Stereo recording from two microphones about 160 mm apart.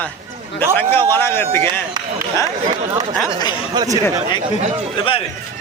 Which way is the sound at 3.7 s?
25° right (ahead or behind).